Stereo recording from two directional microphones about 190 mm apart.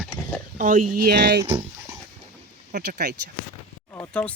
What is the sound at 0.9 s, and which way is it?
Speech, 50° right (ahead or behind).